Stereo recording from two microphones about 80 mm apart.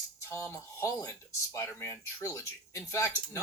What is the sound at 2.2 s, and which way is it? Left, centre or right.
Speech, left.